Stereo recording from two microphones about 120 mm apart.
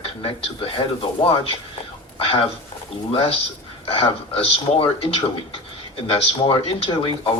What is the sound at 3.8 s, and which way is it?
Speech, 50° left (ahead or behind).